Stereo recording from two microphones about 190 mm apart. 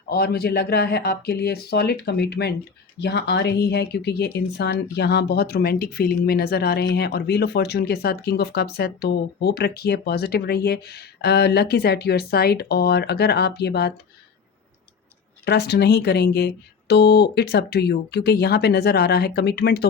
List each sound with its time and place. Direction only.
0.1 s speech: 55° left (ahead or behind)
15.4 s speech: 60° left (ahead or behind)